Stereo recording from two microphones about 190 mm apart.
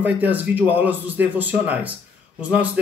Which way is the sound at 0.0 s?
10° right (ahead or behind).